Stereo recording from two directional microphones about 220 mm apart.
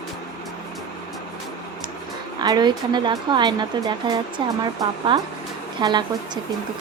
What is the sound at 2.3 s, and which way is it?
A woman's voice, 20° right (ahead or behind).